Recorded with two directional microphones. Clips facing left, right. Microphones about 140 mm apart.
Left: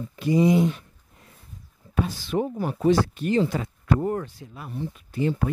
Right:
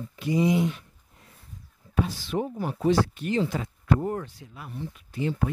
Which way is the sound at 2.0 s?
55° left (ahead or behind).